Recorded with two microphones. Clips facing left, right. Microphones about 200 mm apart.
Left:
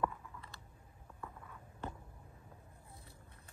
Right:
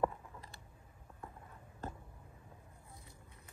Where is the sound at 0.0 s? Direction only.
35° right (ahead or behind).